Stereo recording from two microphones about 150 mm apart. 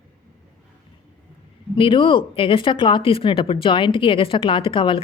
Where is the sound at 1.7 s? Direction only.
35° left (ahead or behind).